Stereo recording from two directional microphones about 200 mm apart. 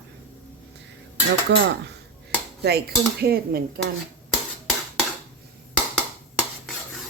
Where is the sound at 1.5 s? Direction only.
60° right (ahead or behind).